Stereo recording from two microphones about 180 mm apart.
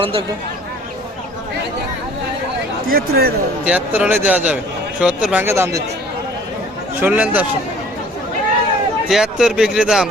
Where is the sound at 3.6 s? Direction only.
5° right (ahead or behind).